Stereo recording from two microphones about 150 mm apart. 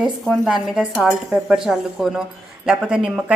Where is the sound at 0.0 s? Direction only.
Centre (ahead or behind).